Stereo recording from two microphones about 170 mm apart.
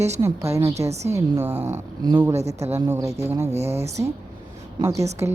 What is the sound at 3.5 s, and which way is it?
Speech, 40° right (ahead or behind).